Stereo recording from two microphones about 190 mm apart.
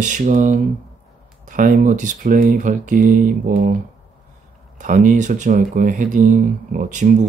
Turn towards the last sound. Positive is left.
turn(degrees=-40)  # may be behind; listen again after turning